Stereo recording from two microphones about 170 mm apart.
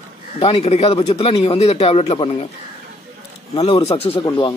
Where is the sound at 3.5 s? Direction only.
35° left (ahead or behind).